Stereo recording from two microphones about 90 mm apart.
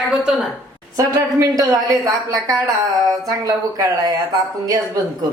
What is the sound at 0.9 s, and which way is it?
Speech, 40° right (ahead or behind).